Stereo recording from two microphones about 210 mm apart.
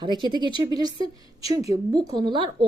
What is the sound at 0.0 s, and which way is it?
Speech, 20° right (ahead or behind).